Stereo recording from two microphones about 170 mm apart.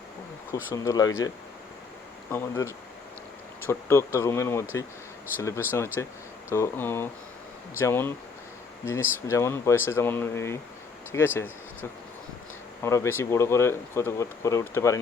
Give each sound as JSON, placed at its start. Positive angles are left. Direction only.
{"t": 0.5, "sound": "speech", "side_deg": 20}
{"t": 2.3, "sound": "speech", "side_deg": 15}
{"t": 12.8, "sound": "speech", "side_deg": 15}